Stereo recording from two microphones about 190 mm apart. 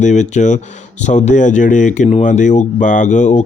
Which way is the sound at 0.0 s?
40° left (ahead or behind).